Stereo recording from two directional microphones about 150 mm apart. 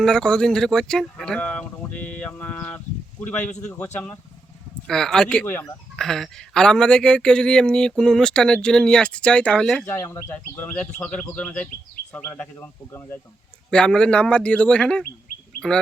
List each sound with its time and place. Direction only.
0.0 s speech: 5° left (ahead or behind)
6.0 s speech: 5° left (ahead or behind)
9.8 s speech: 20° left (ahead or behind)
13.7 s speech: 5° left (ahead or behind)